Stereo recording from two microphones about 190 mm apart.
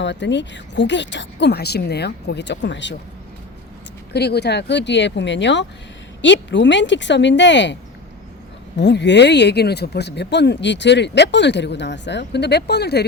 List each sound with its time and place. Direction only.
0.0 s speech: 70° left (ahead or behind)
4.1 s speech: 60° left (ahead or behind)
8.8 s speech: 65° left (ahead or behind)